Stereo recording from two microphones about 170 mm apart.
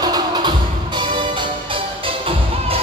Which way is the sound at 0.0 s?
25° right (ahead or behind).